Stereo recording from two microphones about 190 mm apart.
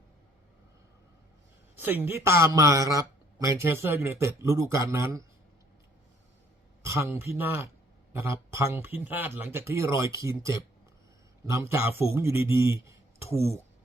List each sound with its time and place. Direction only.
1.8 s speech: 10° right (ahead or behind)
6.8 s speech: 15° right (ahead or behind)
11.7 s speech: 10° right (ahead or behind)